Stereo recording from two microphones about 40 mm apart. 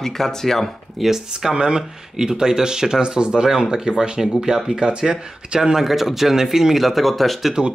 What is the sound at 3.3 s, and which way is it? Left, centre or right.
Speech, centre.